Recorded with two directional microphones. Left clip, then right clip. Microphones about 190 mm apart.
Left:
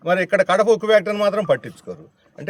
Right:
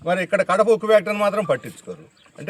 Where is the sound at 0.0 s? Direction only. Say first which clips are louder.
Left 3 dB; 20° left (ahead or behind).